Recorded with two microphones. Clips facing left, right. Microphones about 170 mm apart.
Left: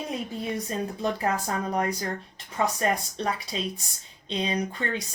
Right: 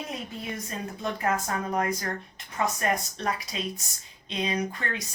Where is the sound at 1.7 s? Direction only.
30° left (ahead or behind).